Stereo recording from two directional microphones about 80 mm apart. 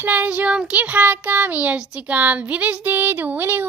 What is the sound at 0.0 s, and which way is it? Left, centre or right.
A child's voice, centre.